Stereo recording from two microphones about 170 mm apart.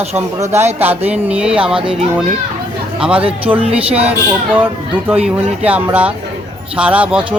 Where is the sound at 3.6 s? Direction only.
35° right (ahead or behind).